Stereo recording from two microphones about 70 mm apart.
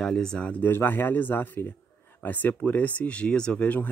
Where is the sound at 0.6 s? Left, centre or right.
Left.